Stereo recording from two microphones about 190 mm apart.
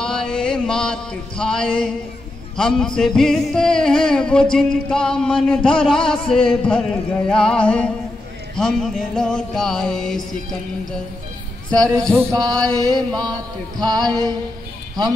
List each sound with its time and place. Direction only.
0.0 s a sound: 5° left (ahead or behind)
2.5 s music: 5° left (ahead or behind)
11.7 s music: 5° left (ahead or behind)
12.3 s speech: 20° right (ahead or behind)